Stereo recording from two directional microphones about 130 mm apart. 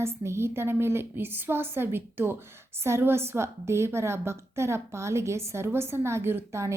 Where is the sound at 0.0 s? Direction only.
20° right (ahead or behind).